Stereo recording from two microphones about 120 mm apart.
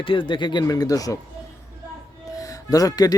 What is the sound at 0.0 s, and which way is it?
Speech, 45° left (ahead or behind).